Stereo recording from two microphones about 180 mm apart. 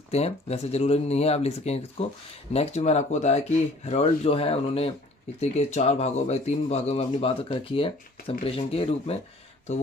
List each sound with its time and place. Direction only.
0.1 s speech: 35° left (ahead or behind)